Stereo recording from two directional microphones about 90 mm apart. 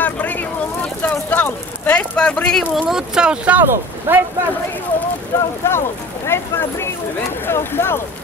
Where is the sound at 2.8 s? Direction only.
5° right (ahead or behind); by 4.2 s 25° right (ahead or behind).